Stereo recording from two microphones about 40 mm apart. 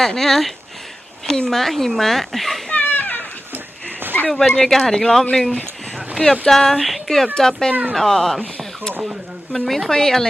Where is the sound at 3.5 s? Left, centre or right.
Right.